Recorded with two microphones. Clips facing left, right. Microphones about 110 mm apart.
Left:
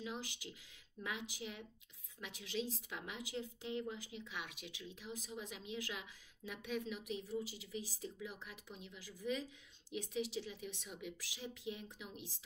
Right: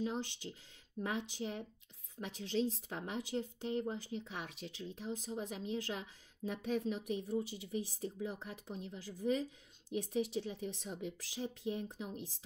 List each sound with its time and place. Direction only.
0.0 s speech: 40° right (ahead or behind)